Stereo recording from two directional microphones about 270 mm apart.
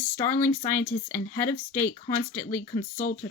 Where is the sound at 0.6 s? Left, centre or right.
Centre.